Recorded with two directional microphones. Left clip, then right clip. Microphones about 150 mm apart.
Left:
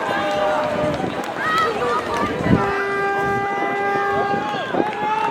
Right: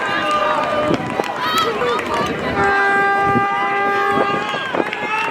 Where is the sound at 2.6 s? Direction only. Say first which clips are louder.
Right 6 dB; 25° right (ahead or behind).